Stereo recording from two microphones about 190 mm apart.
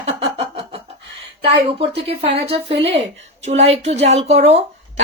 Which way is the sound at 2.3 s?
30° right (ahead or behind).